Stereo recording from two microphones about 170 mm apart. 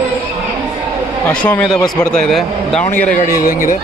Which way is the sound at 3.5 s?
55° left (ahead or behind).